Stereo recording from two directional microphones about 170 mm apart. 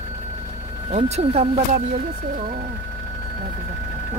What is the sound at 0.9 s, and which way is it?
Speech, 40° right (ahead or behind).